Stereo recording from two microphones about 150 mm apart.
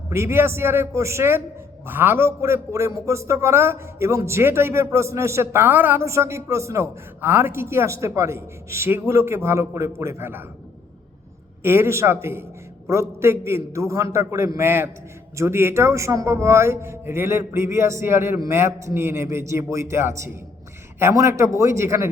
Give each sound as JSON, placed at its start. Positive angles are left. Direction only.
{"t": 0.1, "sound": "speech", "side_deg": -15}
{"t": 11.6, "sound": "a man's voice", "side_deg": -15}